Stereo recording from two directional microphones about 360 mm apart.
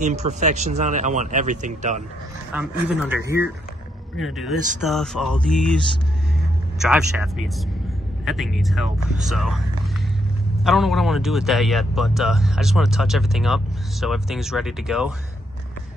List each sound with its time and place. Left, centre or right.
0.0 s speech: centre
2.5 s a man's voice: centre
6.8 s a man's voice: centre
10.6 s a man's voice: centre